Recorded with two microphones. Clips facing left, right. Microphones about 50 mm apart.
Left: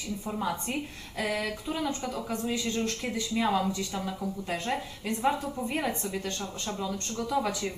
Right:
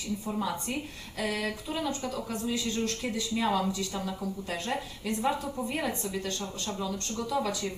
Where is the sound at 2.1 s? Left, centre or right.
Left.